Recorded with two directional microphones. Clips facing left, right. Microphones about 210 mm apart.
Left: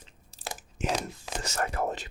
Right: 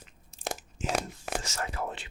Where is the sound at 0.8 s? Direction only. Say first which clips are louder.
Left 4 dB; 65° left (ahead or behind).